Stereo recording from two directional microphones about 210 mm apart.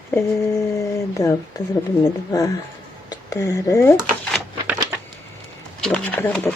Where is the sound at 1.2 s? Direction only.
15° left (ahead or behind).